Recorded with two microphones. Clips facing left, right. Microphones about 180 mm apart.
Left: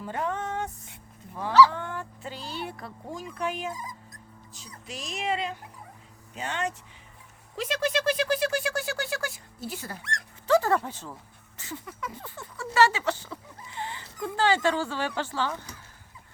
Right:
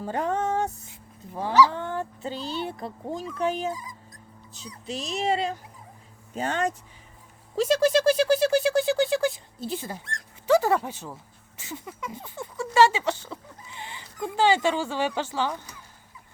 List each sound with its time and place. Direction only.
0.0 s a sound: 40° right (ahead or behind)
1.3 s speech: 30° right (ahead or behind)
4.9 s speech: 30° right (ahead or behind)
8.7 s a sound: 20° right (ahead or behind)
10.0 s dog: 80° left
10.4 s speech: 10° right (ahead or behind)